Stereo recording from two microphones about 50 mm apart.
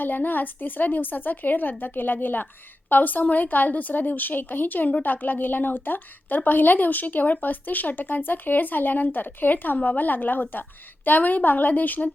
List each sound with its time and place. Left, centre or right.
0.0 s a woman's voice: left